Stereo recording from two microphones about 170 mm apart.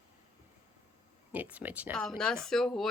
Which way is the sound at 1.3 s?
10° right (ahead or behind).